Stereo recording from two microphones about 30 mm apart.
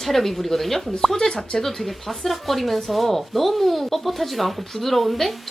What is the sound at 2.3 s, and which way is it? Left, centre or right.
Speech, centre.